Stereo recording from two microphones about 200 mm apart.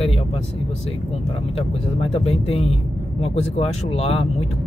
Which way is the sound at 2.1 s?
30° left (ahead or behind).